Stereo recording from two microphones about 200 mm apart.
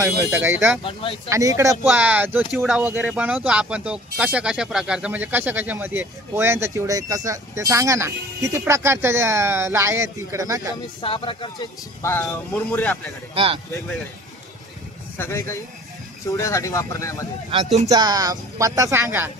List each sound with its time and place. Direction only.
0.0 s speech: 10° right (ahead or behind)
0.8 s speech: 25° left (ahead or behind)
1.3 s speech: 15° right (ahead or behind)
11.0 s speech: 25° left (ahead or behind); by 13.1 s 5° left (ahead or behind)
13.3 s speech: 30° right (ahead or behind)
15.1 s speech: 10° left (ahead or behind)
17.8 s speech: 20° right (ahead or behind)